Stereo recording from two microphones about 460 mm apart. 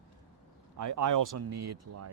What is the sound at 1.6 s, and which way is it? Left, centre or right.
Speech, right.